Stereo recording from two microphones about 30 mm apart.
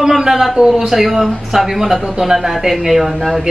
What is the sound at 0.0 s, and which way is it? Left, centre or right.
A man's voice, centre.